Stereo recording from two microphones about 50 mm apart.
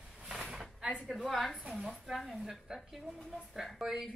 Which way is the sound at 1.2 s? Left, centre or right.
Centre.